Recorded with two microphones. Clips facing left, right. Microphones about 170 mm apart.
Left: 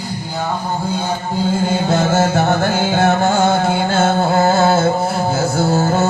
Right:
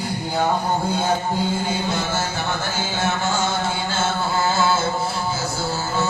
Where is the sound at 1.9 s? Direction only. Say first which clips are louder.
Left 9 dB; 50° left (ahead or behind).